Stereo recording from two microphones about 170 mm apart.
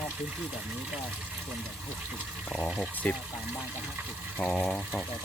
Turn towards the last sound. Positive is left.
turn(degrees=5)  # may be behind; listen again after turning